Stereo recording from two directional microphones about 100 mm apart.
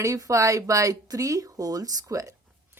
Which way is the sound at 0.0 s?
35° right (ahead or behind).